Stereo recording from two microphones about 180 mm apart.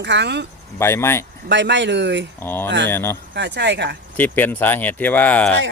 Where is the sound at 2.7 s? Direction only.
80° right.